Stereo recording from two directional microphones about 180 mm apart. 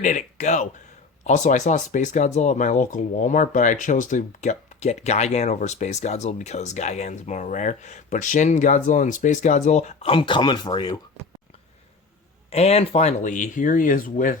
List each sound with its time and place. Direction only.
0.0 s speech: 45° left (ahead or behind); by 11.0 s 25° left (ahead or behind)
12.5 s speech: 35° left (ahead or behind)